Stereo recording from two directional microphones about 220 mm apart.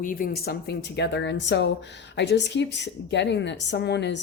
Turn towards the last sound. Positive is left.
turn(degrees=50)  # may be behind; listen again after turning